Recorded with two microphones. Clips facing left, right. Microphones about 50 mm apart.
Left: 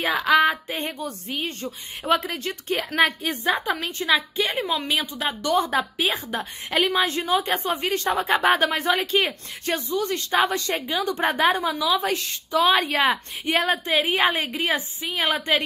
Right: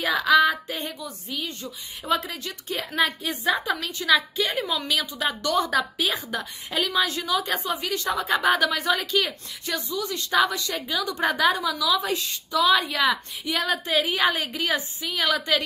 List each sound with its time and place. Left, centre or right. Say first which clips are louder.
0.0 s a woman's voice: even; left